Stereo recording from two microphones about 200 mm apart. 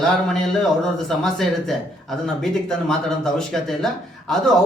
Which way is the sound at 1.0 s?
Centre (ahead or behind).